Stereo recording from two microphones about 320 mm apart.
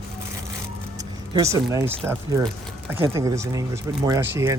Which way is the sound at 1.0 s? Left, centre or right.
Centre.